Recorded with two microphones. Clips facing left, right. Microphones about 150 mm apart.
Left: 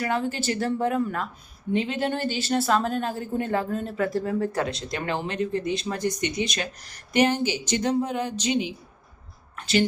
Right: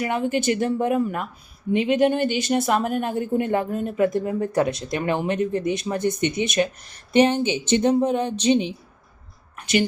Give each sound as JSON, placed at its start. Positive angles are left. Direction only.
{"t": 0.0, "sound": "speech", "side_deg": -15}